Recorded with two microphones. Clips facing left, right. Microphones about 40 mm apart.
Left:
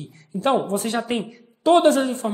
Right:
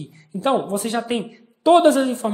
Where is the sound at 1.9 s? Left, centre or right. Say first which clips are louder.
Right 2 dB; centre.